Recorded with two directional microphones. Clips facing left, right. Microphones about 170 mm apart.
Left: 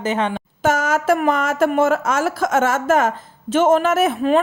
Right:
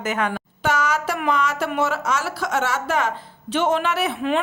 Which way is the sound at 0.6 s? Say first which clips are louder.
Left 4 dB; 50° left (ahead or behind).